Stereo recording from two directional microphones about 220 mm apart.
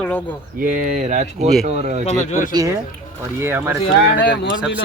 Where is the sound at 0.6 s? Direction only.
35° right (ahead or behind).